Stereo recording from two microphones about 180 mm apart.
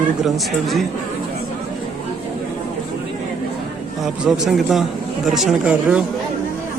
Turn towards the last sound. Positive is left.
turn(degrees=-5)  # may be behind; listen again after turning